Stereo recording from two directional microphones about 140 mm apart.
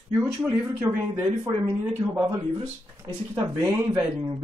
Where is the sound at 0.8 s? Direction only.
15° right (ahead or behind).